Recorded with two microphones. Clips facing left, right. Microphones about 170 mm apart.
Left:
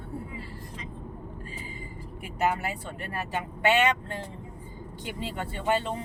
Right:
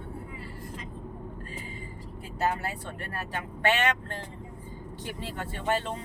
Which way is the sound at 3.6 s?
10° left (ahead or behind).